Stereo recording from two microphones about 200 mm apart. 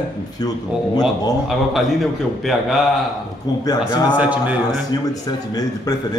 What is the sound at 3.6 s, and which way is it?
Speech, 20° left (ahead or behind).